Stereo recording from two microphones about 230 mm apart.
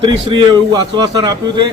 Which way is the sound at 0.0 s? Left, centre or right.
Centre.